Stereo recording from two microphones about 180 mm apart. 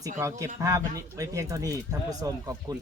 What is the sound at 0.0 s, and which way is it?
Speech, 15° right (ahead or behind).